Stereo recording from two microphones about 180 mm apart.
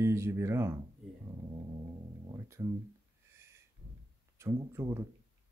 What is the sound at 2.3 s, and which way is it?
Speech, 20° right (ahead or behind).